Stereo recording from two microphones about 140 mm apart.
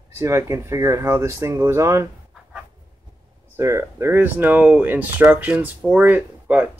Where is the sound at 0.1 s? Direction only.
20° right (ahead or behind).